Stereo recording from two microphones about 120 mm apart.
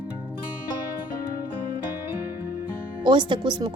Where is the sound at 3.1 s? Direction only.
40° right (ahead or behind).